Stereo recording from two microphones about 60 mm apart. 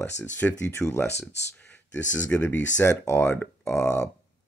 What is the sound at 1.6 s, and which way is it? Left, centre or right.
Speech, left.